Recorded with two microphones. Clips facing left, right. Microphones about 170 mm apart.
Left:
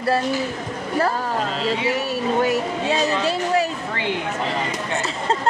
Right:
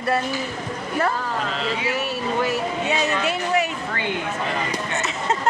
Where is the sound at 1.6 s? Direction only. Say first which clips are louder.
Left 3 dB; 30° left (ahead or behind).